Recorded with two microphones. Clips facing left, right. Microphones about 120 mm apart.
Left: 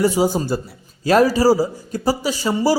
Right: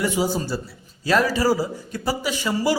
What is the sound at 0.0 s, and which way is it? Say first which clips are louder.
A man's voice: left 5 dB; 35° left (ahead or behind).